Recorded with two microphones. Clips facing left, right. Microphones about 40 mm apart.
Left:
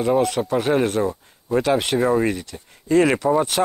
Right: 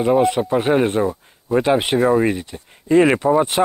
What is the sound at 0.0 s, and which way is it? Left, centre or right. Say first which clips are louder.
Speech: right 3 dB; centre.